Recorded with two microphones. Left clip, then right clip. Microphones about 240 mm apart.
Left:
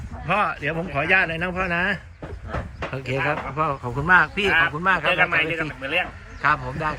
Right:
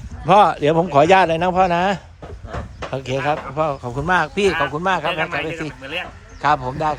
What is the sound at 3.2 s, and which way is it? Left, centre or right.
A man's voice, centre.